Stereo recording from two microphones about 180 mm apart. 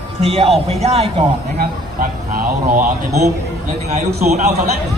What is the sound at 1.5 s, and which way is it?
Speech, 50° right (ahead or behind).